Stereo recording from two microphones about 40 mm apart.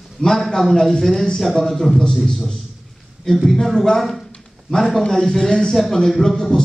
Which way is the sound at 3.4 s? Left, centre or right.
Centre.